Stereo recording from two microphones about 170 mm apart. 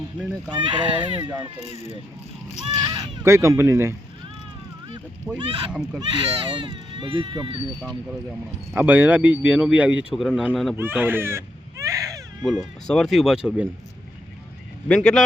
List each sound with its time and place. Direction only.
0.5 s speech: 30° right (ahead or behind)
1.3 s speech: 10° right (ahead or behind)
1.6 s speech: 40° left (ahead or behind)
2.8 s speech: 20° right (ahead or behind)
5.4 s speech: 30° right (ahead or behind)
8.7 s speech: 10° right (ahead or behind)
10.8 s baby cry: 10° right (ahead or behind)
12.4 s speech: centre (ahead or behind)
14.8 s speech: 5° left (ahead or behind)